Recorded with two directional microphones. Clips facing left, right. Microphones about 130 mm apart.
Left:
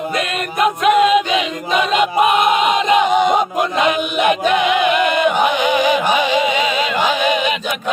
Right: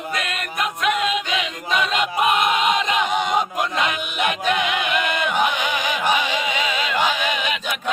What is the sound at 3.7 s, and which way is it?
Chant, 25° left (ahead or behind).